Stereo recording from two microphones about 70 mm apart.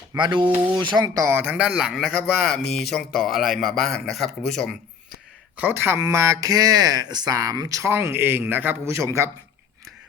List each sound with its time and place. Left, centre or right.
0.6 s speech: right
1.3 s speech: right
1.6 s a man's voice: centre
1.9 s speech: centre
5.5 s a man's voice: right
6.0 s speech: right
7.3 s speech: right
7.9 s a man's voice: right